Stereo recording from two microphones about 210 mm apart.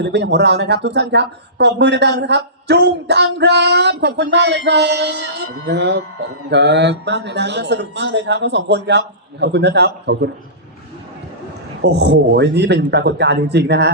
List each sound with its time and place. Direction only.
0.0 s speech: 55° right (ahead or behind)
11.8 s speech: 55° right (ahead or behind)